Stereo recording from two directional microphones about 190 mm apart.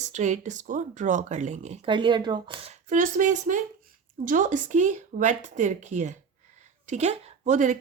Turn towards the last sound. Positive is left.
turn(degrees=-40)  # may be behind; listen again after turning